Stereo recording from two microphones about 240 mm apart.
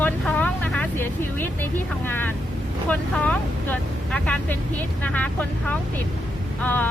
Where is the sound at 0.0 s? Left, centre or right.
Centre.